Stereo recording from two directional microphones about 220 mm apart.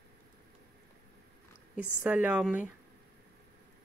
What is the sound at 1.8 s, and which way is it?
Speech, 5° right (ahead or behind).